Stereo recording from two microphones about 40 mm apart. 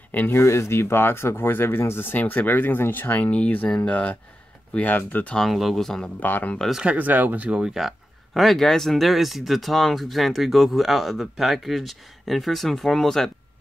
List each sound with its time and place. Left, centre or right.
0.3 s speech: left
2.1 s speech: left
3.3 s speech: left
5.5 s speech: centre
6.1 s speech: left
6.6 s speech: centre
7.0 s speech: right
7.8 s speech: centre
8.4 s speech: centre